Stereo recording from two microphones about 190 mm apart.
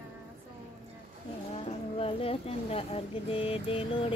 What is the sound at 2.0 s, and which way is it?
Speech, 30° left (ahead or behind).